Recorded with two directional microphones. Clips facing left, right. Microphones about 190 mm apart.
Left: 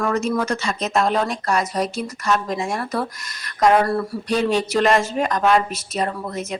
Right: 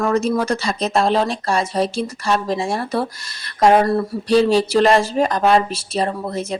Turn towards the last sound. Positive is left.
turn(degrees=-30)  # may be behind; listen again after turning